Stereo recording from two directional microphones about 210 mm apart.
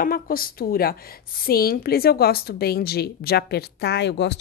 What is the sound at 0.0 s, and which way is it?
A woman's voice, 45° left (ahead or behind).